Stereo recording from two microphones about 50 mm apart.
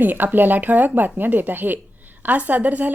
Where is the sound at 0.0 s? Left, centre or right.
Right.